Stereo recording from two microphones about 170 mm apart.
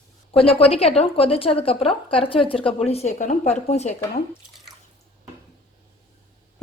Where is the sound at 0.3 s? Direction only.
35° left (ahead or behind).